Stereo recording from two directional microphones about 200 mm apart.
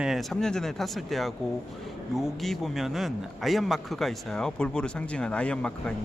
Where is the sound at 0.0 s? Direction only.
Centre (ahead or behind).